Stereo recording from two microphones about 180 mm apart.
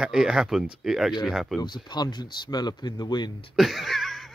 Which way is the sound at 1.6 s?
25° left (ahead or behind).